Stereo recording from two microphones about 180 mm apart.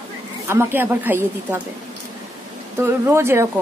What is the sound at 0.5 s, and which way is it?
Speech, 15° right (ahead or behind).